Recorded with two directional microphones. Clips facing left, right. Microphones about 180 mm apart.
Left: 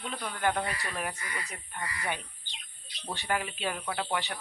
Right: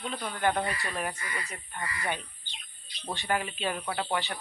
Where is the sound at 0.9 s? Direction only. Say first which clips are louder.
Right 2 dB; 5° left (ahead or behind).